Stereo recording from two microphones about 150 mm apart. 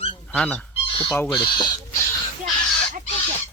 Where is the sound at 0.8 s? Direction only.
35° left (ahead or behind).